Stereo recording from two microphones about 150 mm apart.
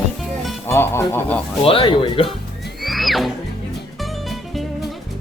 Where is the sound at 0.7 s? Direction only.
15° left (ahead or behind).